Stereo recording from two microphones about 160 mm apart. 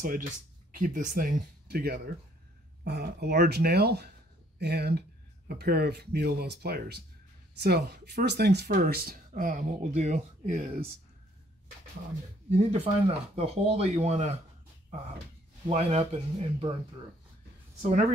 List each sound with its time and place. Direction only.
0.0 s speech: 60° right (ahead or behind)
2.8 s speech: 90° right
5.6 s speech: 75° right (ahead or behind)
8.7 s speech: 70° right (ahead or behind); by 10.9 s 45° right (ahead or behind)
12.4 s speech: 40° right (ahead or behind)
15.7 s speech: 40° right (ahead or behind)